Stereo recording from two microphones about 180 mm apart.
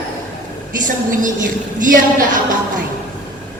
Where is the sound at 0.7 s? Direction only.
45° right (ahead or behind).